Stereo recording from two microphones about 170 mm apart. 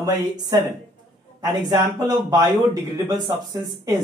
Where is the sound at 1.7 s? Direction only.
25° right (ahead or behind).